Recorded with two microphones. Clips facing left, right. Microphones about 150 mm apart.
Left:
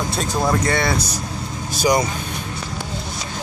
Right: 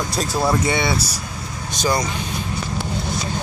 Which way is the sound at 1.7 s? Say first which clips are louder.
Left 3 dB; 5° left (ahead or behind).